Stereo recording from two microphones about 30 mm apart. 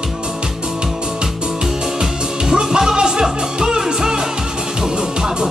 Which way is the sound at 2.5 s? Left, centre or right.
Right.